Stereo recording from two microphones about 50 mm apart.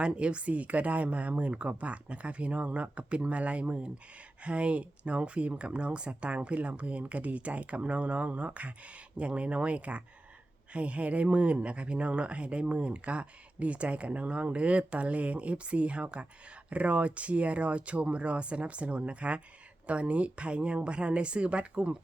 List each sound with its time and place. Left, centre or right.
0.0 s speech: right